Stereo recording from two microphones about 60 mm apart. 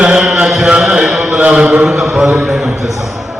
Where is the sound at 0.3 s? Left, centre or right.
Centre.